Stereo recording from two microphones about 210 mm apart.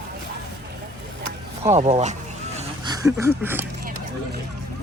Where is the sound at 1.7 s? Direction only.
30° right (ahead or behind).